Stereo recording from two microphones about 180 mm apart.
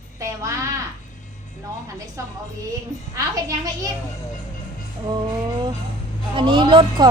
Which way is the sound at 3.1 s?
20° right (ahead or behind).